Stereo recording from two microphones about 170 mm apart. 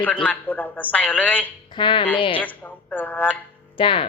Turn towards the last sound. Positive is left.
turn(degrees=30)  # may be behind; listen again after turning